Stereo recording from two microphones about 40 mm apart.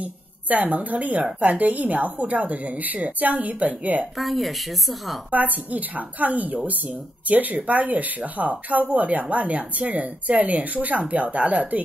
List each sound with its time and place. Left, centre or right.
0.0 s a woman's voice: right
4.2 s a woman's voice: centre
5.3 s a woman's voice: right